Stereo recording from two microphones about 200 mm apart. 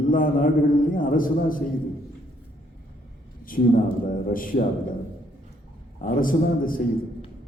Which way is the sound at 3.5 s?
45° left (ahead or behind).